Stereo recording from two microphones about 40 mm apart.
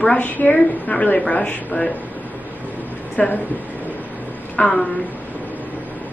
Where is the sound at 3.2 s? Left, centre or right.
Left.